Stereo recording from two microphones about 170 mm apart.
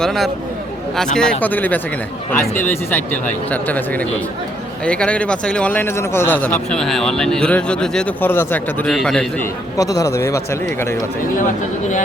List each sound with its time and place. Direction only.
0.0 s speech: centre (ahead or behind)
9.7 s speech: 20° left (ahead or behind)